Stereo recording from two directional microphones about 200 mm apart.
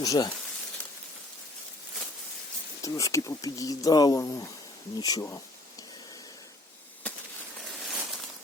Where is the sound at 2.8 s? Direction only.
15° left (ahead or behind).